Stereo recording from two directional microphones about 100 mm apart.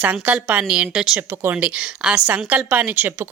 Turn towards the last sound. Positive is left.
turn(degrees=-15)  # may be behind; listen again after turning